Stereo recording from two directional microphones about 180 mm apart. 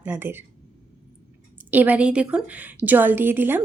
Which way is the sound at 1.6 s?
10° right (ahead or behind).